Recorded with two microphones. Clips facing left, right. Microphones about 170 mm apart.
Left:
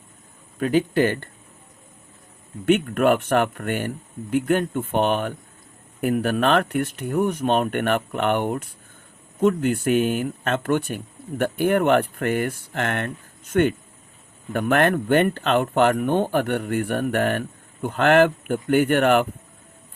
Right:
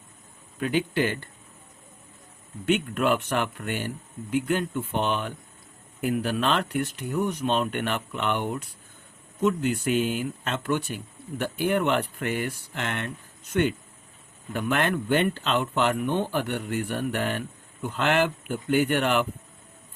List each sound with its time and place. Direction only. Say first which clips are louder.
0.6 s speech: left 6 dB; 45° left (ahead or behind)
2.6 s speech: left 5 dB; 50° left (ahead or behind)